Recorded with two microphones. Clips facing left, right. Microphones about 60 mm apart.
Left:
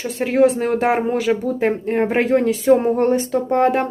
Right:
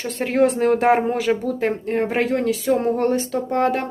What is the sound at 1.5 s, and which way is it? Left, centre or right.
Speech, centre.